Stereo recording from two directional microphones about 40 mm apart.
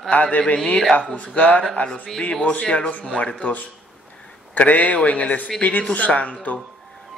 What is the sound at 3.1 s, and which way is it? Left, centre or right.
Speech, left.